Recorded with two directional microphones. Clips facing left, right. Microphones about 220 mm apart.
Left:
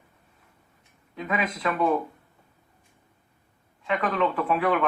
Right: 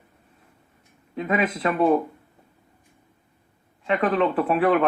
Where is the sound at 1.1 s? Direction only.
30° right (ahead or behind).